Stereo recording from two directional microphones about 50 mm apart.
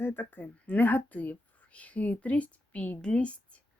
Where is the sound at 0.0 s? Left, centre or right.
Left.